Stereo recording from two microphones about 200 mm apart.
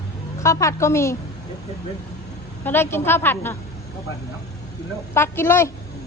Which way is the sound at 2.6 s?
10° left (ahead or behind).